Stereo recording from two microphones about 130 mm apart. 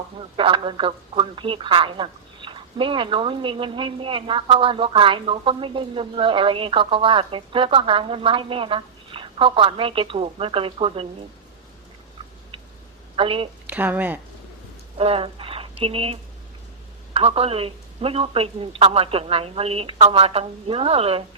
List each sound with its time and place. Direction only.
0.3 s a woman's voice: 40° right (ahead or behind)
13.1 s a woman's voice: 45° right (ahead or behind)
13.7 s speech: 15° right (ahead or behind)
14.9 s a sound: 50° right (ahead or behind)
15.8 s a woman's voice: 45° right (ahead or behind)
17.2 s a woman's voice: 50° right (ahead or behind)